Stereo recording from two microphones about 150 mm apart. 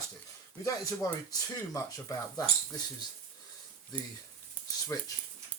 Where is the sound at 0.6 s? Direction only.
25° left (ahead or behind).